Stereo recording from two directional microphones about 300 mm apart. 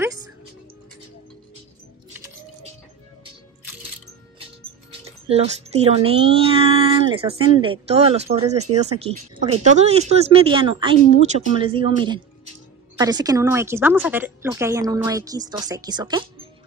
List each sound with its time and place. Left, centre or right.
5.3 s a woman's voice: centre